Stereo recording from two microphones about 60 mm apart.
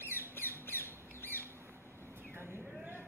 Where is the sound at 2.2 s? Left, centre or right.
Right.